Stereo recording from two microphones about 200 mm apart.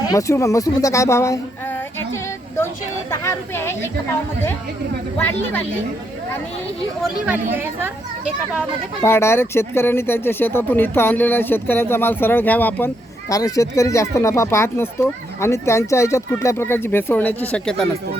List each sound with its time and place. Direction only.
0.1 s speech: 15° left (ahead or behind)
3.1 s speech: 10° left (ahead or behind)
5.1 s speech: 10° left (ahead or behind)
7.0 s speech: 10° right (ahead or behind)
9.0 s speech: 10° left (ahead or behind)